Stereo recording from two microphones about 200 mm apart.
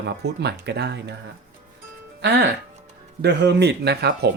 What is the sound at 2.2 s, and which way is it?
Speech, 55° right (ahead or behind).